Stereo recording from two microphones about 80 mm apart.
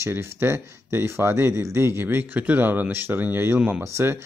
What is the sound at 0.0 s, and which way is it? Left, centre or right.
Speech, right.